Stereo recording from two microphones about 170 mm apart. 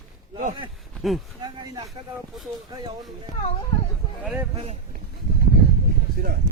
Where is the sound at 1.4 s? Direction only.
25° right (ahead or behind).